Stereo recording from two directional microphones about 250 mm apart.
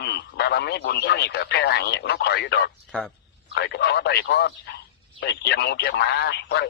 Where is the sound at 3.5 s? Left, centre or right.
Left.